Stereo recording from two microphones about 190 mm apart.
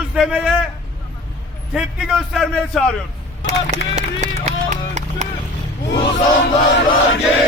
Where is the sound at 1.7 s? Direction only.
Centre (ahead or behind).